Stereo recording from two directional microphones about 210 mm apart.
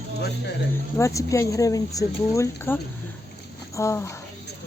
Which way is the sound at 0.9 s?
15° left (ahead or behind).